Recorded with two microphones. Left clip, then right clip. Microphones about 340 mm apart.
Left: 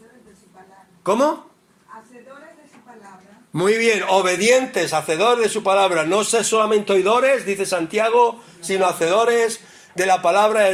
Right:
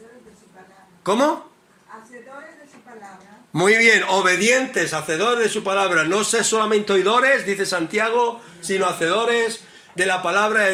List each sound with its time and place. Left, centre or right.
1.0 s speech: centre
3.5 s a man's voice: centre